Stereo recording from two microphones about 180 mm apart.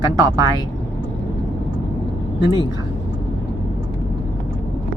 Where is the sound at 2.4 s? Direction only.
25° left (ahead or behind).